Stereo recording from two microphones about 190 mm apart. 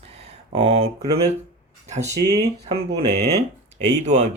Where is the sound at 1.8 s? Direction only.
35° right (ahead or behind).